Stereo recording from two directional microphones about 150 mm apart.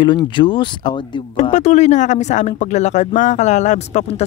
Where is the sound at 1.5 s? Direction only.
45° left (ahead or behind).